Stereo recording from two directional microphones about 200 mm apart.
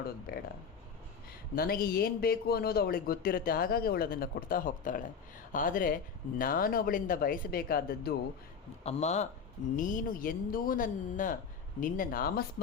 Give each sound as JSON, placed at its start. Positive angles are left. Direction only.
{"t": 0.3, "sound": "a man's voice", "side_deg": 50}
{"t": 1.5, "sound": "a man's voice", "side_deg": 50}
{"t": 8.8, "sound": "a man's voice", "side_deg": 35}